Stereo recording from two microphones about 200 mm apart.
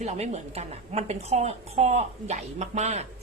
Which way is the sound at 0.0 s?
35° right (ahead or behind).